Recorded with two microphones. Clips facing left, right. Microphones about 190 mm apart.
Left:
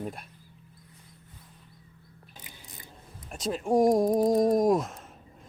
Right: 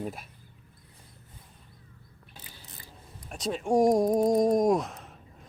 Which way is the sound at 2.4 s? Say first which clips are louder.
Left 1 dB; 20° left (ahead or behind).